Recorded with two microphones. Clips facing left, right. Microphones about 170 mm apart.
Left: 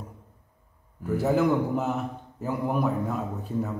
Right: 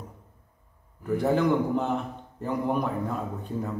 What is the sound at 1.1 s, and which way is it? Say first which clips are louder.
A man's voice: even; 5° left (ahead or behind).